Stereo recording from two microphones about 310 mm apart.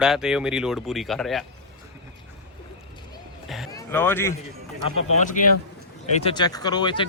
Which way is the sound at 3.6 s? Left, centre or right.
Centre.